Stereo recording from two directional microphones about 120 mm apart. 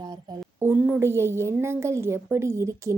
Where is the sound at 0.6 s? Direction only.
15° right (ahead or behind).